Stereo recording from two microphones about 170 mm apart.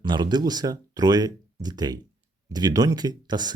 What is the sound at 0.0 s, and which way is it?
Speech, 25° right (ahead or behind).